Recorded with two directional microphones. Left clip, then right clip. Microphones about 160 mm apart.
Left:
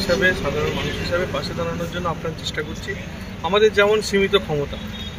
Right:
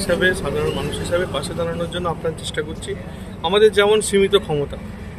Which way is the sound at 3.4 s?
35° right (ahead or behind).